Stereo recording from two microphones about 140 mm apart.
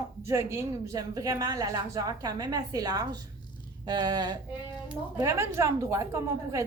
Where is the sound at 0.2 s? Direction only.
20° right (ahead or behind).